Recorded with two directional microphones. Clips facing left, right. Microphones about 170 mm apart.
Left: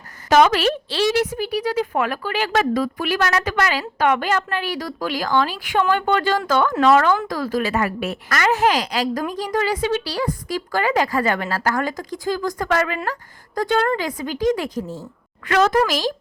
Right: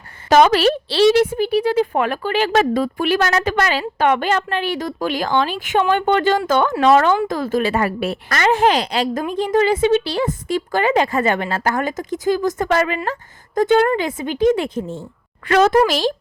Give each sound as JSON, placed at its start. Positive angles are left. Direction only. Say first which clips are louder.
{"t": 0.3, "sound": "a woman's voice", "louder": "right 3 dB", "side_deg": -30}